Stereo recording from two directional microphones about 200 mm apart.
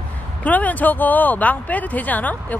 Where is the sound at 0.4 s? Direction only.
10° left (ahead or behind).